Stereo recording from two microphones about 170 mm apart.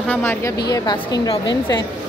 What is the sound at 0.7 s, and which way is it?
A woman's voice, 25° left (ahead or behind).